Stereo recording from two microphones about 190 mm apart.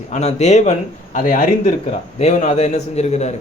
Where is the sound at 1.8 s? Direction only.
35° left (ahead or behind).